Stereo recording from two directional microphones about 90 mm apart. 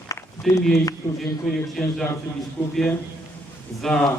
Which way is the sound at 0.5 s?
5° left (ahead or behind).